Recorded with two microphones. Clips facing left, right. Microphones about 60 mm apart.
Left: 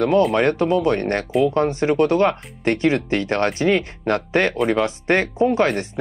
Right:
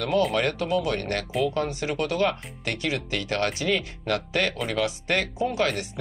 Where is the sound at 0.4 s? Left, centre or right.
Left.